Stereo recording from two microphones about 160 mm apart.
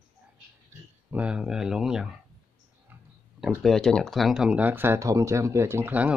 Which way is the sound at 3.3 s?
Centre (ahead or behind).